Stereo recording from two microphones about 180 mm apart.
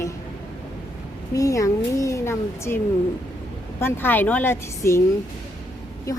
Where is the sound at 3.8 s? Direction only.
10° left (ahead or behind).